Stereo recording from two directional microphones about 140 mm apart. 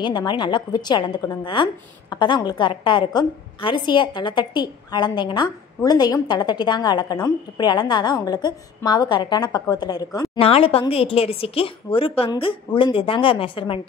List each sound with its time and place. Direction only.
0.0 s a woman's voice: 30° left (ahead or behind)
10.3 s a woman's voice: 45° left (ahead or behind)